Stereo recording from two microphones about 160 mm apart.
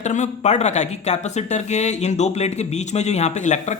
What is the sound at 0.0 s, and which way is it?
Speech, 45° left (ahead or behind).